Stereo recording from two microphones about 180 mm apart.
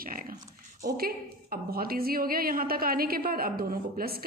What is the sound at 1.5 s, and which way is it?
A woman's voice, 55° right (ahead or behind).